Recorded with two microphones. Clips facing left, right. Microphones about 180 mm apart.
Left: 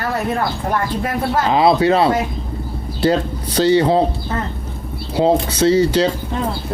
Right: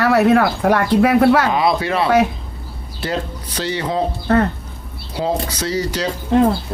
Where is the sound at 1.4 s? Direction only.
25° left (ahead or behind).